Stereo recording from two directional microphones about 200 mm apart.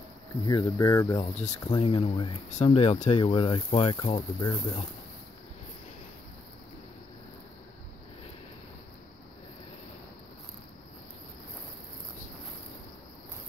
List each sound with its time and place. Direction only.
0.4 s speech: 20° left (ahead or behind)